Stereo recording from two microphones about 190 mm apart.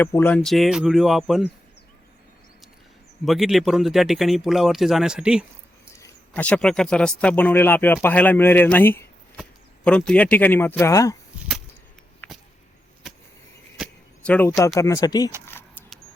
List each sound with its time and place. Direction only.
0.0 s speech: 10° left (ahead or behind)
3.2 s speech: centre (ahead or behind)
6.0 s speech: 10° left (ahead or behind)
12.2 s a sound: 10° left (ahead or behind)
14.2 s speech: 10° left (ahead or behind)
15.4 s keys jangling: 10° left (ahead or behind)